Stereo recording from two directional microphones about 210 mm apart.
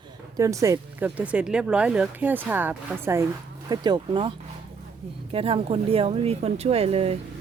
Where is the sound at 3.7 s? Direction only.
20° right (ahead or behind).